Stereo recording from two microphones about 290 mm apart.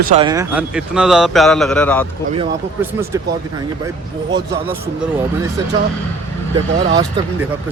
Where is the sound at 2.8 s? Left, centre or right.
Centre.